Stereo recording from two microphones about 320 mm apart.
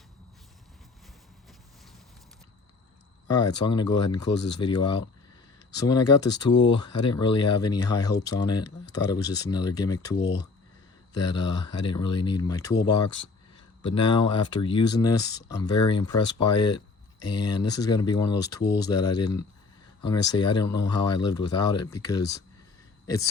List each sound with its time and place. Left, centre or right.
3.2 s speech: centre
11.3 s speech: centre
18.6 s speech: left
18.9 s speech: centre